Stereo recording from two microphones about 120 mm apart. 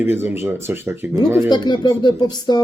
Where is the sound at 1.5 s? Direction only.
35° left (ahead or behind).